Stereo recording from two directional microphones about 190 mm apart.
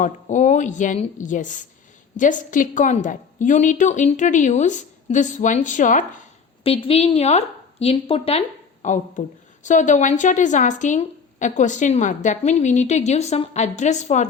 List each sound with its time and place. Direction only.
0.0 s a woman's voice: 40° left (ahead or behind)
6.7 s a woman's voice: 30° left (ahead or behind)